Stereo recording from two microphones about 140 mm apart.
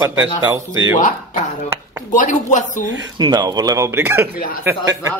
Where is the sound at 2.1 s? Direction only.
65° left (ahead or behind).